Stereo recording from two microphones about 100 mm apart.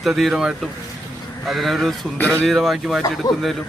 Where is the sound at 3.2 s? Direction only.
40° left (ahead or behind).